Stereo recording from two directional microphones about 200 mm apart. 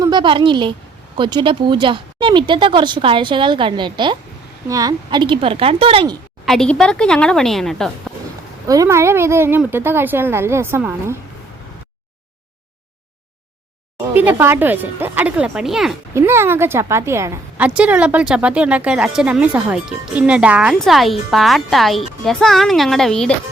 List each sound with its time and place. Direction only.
0.0 s a woman's voice: 20° right (ahead or behind)
6.4 s speech: centre (ahead or behind)
8.6 s a woman's voice: 15° right (ahead or behind)
14.1 s a woman's voice: 10° right (ahead or behind)
16.1 s a woman's voice: 10° right (ahead or behind)